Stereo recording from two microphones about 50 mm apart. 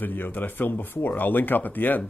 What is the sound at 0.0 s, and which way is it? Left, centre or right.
Speech, left.